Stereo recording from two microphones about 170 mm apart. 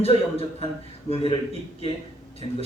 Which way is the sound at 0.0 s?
35° left (ahead or behind).